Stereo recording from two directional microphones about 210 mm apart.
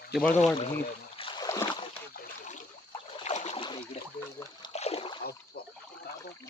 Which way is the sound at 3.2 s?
35° left (ahead or behind).